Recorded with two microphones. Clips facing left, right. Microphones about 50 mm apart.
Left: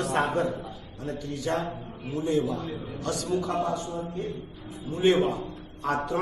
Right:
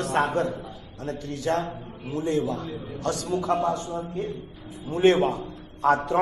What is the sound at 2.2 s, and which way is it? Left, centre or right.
Speech, right.